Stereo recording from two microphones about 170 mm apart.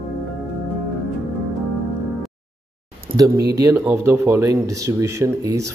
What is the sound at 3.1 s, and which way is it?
Speech, 25° right (ahead or behind).